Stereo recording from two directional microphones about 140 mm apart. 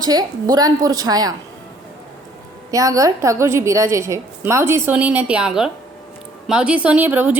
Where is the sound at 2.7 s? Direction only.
25° right (ahead or behind).